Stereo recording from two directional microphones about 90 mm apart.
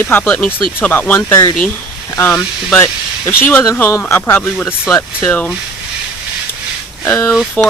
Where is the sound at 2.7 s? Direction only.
25° left (ahead or behind).